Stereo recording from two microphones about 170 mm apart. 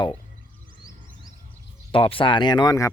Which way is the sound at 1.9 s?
30° left (ahead or behind).